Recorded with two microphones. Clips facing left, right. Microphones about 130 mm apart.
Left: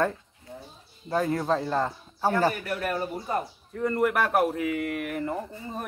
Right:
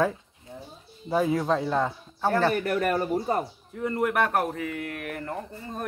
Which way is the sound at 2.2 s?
10° left (ahead or behind).